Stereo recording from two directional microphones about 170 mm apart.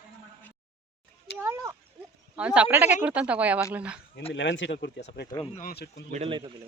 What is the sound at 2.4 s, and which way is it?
Speech, 5° right (ahead or behind).